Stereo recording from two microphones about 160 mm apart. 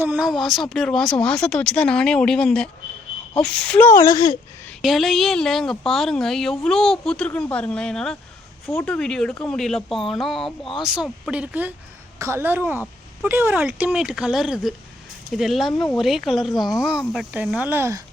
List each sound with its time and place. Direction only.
0.0 s speech: 10° right (ahead or behind)
3.9 s speech: 25° left (ahead or behind)
4.8 s speech: centre (ahead or behind); by 18.0 s 15° right (ahead or behind)